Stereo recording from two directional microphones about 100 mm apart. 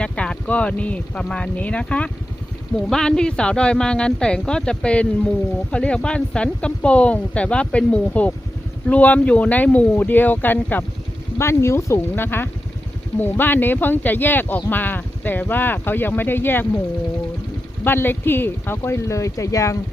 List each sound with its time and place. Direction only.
0.0 s speech: 10° left (ahead or behind)
17.8 s speech: 20° left (ahead or behind)